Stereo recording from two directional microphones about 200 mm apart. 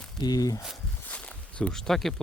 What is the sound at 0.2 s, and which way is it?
Speech, 20° left (ahead or behind).